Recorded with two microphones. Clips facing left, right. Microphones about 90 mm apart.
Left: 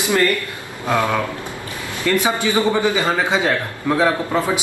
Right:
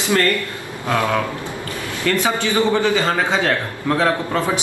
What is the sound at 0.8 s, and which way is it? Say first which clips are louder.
A man's voice: even; 20° left (ahead or behind).